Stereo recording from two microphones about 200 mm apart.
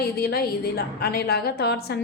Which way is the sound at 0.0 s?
50° left (ahead or behind).